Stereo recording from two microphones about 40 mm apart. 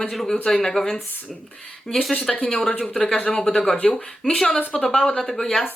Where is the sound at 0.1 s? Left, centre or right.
Centre.